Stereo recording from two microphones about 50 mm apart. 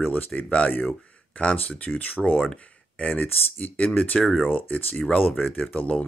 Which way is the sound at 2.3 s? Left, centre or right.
Left.